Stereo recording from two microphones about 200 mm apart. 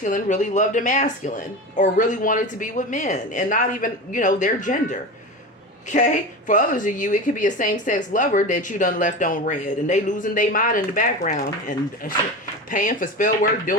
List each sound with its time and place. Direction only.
0.0 s a woman's voice: 40° left (ahead or behind)